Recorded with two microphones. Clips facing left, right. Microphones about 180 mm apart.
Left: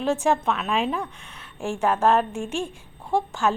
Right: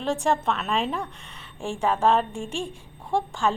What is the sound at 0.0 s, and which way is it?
A woman's voice, centre (ahead or behind).